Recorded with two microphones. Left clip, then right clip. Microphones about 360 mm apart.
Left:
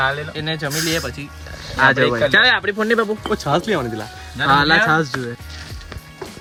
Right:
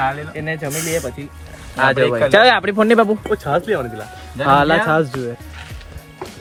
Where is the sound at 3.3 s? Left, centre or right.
Left.